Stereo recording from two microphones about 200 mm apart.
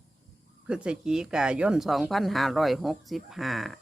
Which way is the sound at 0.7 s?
5° right (ahead or behind).